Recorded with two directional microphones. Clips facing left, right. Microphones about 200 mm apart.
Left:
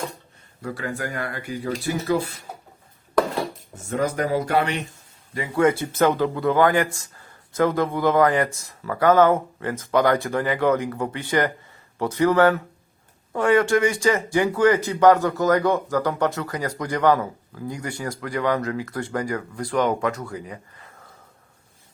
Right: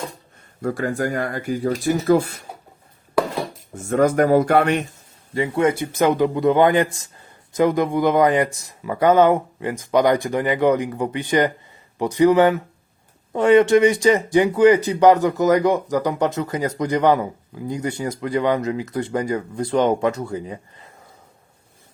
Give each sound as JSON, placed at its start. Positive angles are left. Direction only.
{"t": 0.6, "sound": "speech", "side_deg": -45}
{"t": 3.8, "sound": "speech", "side_deg": -50}
{"t": 5.3, "sound": "speech", "side_deg": -25}